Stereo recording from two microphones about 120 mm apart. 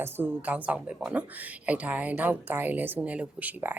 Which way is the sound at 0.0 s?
15° right (ahead or behind).